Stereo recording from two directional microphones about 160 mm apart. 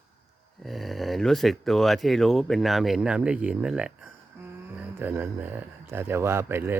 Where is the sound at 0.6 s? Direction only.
Centre (ahead or behind).